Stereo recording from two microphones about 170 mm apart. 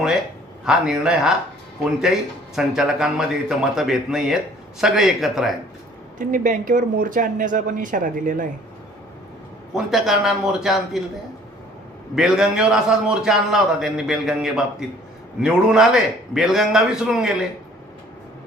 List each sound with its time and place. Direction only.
0.6 s a man's voice: 5° right (ahead or behind)
2.6 s a man's voice: 5° right (ahead or behind)
6.1 s speech: 50° right (ahead or behind)
9.7 s a man's voice: centre (ahead or behind)
12.1 s a man's voice: 5° right (ahead or behind)